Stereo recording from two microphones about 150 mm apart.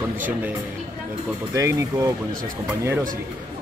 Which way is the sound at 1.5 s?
20° right (ahead or behind).